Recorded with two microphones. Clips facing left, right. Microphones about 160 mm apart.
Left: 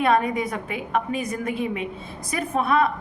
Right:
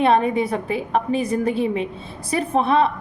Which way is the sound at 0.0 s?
30° right (ahead or behind).